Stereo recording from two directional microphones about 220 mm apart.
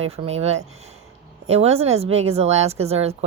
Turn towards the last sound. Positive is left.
turn(degrees=-30)  # may be behind; listen again after turning